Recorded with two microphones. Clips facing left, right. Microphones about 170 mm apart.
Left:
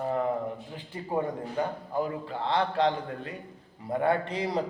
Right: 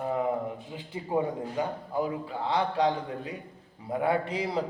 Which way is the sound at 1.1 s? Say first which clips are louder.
Right 1 dB; 10° right (ahead or behind).